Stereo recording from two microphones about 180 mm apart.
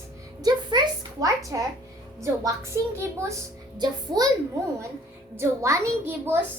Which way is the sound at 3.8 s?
20° right (ahead or behind).